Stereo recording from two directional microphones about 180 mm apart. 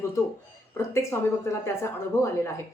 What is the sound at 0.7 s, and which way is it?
A woman's voice, 15° left (ahead or behind).